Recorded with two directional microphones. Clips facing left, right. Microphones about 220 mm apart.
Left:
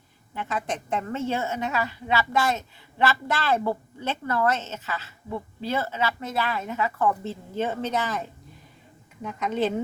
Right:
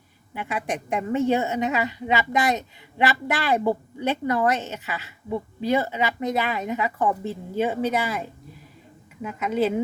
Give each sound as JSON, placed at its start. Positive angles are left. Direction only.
{"t": 0.3, "sound": "a woman's voice", "side_deg": -10}